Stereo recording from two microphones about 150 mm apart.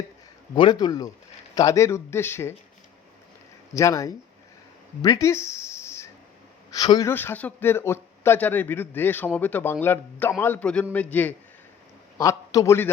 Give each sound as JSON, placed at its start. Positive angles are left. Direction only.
{"t": 0.5, "sound": "speech", "side_deg": 30}
{"t": 3.8, "sound": "speech", "side_deg": 20}
{"t": 7.1, "sound": "a man's voice", "side_deg": 15}